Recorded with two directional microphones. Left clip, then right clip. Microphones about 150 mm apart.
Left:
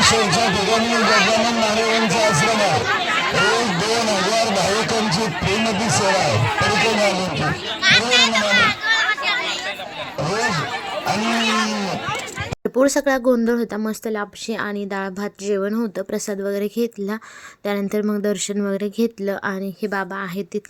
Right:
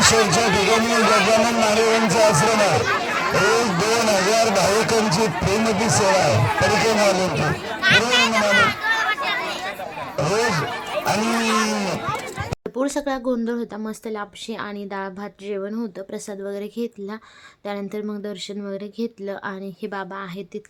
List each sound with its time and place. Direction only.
0.0 s a sound: 5° left (ahead or behind)
0.5 s speech: 10° left (ahead or behind)
7.8 s speech: 50° right (ahead or behind)
8.5 s chatter: 50° right (ahead or behind)
10.2 s speech: 10° left (ahead or behind)
12.7 s speech: 35° left (ahead or behind)
15.4 s speech: 40° left (ahead or behind)
19.2 s speech: 30° left (ahead or behind)